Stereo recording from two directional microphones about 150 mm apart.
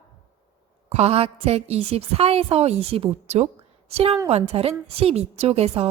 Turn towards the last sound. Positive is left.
turn(degrees=-45)  # may be behind; listen again after turning